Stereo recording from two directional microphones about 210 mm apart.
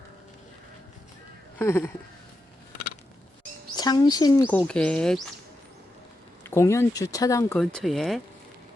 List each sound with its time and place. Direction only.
1.5 s speech: 10° left (ahead or behind)
3.8 s speech: 20° left (ahead or behind)
4.5 s speech: 5° left (ahead or behind)
6.5 s speech: 10° left (ahead or behind)
7.6 s speech: 5° left (ahead or behind)